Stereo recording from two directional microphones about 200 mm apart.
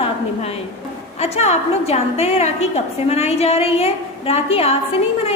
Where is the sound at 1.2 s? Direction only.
30° left (ahead or behind).